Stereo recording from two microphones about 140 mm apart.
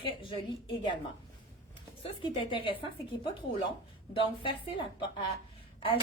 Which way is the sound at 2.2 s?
35° left (ahead or behind).